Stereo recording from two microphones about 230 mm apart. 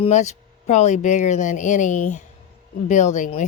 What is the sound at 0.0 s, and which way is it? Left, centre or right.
Speech, left.